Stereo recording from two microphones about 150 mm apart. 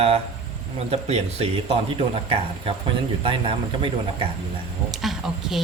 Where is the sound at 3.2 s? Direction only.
35° right (ahead or behind).